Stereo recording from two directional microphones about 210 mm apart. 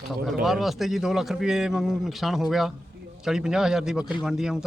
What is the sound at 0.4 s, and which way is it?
Speech, centre (ahead or behind).